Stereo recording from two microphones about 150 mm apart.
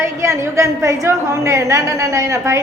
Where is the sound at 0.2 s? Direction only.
20° right (ahead or behind).